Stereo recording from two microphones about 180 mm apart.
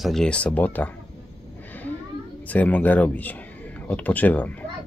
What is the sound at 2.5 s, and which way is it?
Speech, 10° left (ahead or behind).